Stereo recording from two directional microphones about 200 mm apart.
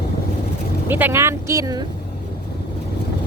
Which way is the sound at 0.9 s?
10° right (ahead or behind).